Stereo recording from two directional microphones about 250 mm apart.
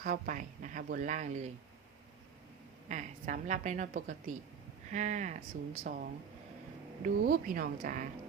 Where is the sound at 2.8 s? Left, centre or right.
Right.